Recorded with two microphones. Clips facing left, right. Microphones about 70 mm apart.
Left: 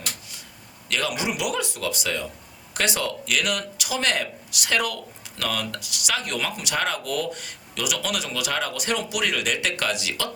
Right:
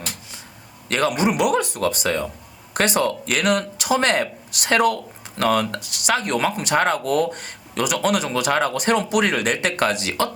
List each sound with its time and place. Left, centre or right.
0.9 s speech: right